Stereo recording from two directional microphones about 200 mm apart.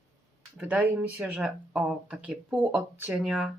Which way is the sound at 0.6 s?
10° right (ahead or behind).